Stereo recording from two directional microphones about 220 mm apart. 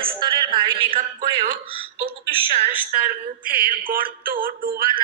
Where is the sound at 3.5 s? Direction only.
40° right (ahead or behind).